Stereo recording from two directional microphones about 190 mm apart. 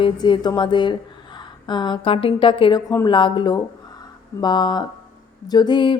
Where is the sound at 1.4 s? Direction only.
25° left (ahead or behind).